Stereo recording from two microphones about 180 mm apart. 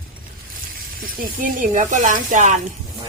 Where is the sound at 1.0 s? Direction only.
50° right (ahead or behind).